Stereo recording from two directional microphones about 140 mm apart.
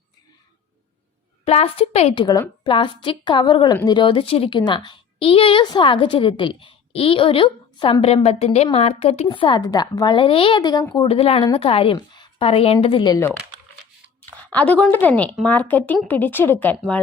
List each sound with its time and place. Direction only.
1.5 s a woman's voice: 45° left (ahead or behind)
2.6 s a woman's voice: 35° left (ahead or behind)
10.9 s a woman's voice: 40° left (ahead or behind)
11.9 s a woman's voice: 30° left (ahead or behind)
14.5 s speech: 10° left (ahead or behind)